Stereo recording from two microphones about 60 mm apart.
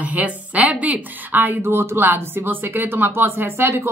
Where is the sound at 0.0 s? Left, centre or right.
Right.